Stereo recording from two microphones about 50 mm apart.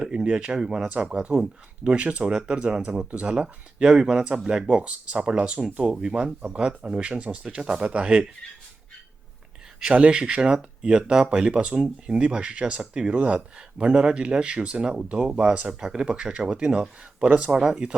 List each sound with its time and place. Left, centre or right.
0.0 s speech: centre
0.9 s speech: right
9.9 s speech: right
14.8 s speech: centre
17.6 s speech: centre